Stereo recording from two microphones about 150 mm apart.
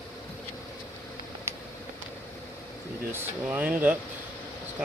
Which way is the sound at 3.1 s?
10° right (ahead or behind).